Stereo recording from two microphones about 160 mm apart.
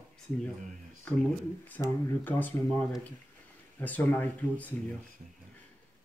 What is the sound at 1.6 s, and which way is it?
Speech, 15° left (ahead or behind).